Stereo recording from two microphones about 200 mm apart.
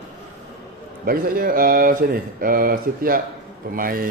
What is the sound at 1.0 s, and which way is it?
Speech, 45° right (ahead or behind).